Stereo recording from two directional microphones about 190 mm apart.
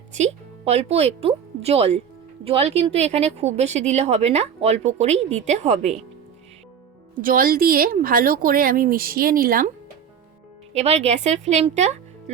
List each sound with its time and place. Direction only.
0.1 s speech: 35° right (ahead or behind)
7.2 s speech: 45° right (ahead or behind)
10.8 s speech: 35° right (ahead or behind)